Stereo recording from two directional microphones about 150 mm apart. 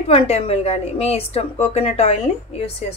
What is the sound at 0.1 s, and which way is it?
A woman's voice, 40° left (ahead or behind).